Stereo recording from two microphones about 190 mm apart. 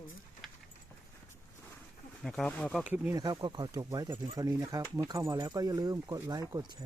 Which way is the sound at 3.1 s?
20° right (ahead or behind).